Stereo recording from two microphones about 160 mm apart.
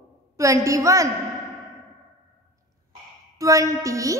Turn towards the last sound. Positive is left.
turn(degrees=-20)  # may be behind; listen again after turning